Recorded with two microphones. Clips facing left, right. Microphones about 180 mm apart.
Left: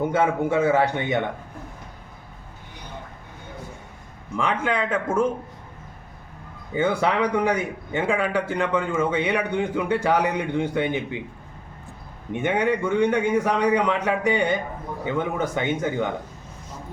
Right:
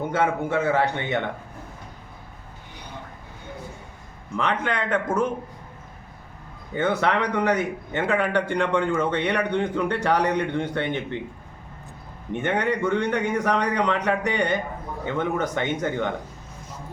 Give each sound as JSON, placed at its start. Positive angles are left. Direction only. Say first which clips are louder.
{"t": 0.1, "sound": "a man's voice", "louder": "left 2 dB", "side_deg": 10}
{"t": 4.4, "sound": "a man's voice", "louder": "left 1 dB", "side_deg": 10}
{"t": 6.7, "sound": "a man's voice", "louder": "left 1 dB", "side_deg": 10}
{"t": 12.4, "sound": "a man's voice", "louder": "left 2 dB", "side_deg": 10}